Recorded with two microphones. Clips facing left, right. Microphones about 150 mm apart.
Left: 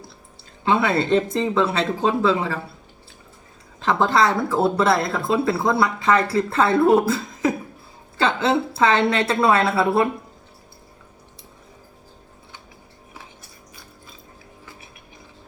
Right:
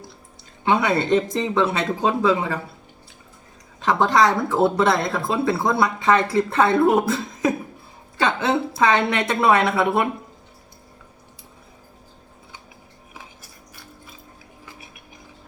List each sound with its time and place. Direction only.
0.6 s speech: 20° right (ahead or behind)
3.8 s a woman's voice: 20° right (ahead or behind)